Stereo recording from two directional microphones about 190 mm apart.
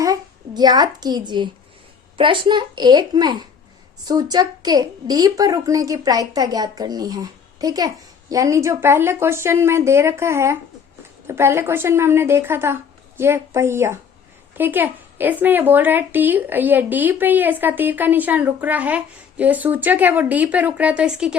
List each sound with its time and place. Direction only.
0.0 s a child's voice: 20° right (ahead or behind)